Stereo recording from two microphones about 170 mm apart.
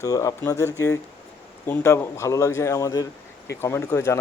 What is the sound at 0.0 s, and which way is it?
Speech, 20° left (ahead or behind).